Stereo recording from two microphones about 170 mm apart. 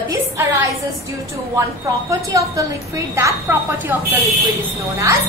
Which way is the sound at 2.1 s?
20° right (ahead or behind).